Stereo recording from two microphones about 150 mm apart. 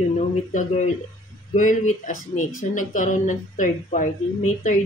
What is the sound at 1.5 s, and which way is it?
Speech, 55° left (ahead or behind).